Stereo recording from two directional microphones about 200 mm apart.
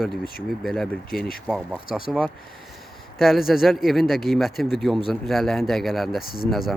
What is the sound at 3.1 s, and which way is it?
Speech, centre (ahead or behind).